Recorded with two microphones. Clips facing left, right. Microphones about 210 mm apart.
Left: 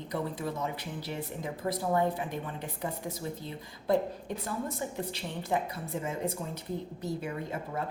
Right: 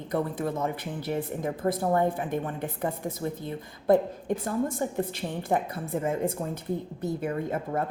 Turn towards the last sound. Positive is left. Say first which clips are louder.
# right 6 dB
turn(degrees=-50)  # may be behind; listen again after turning